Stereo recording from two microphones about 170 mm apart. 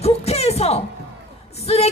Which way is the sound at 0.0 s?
40° left (ahead or behind).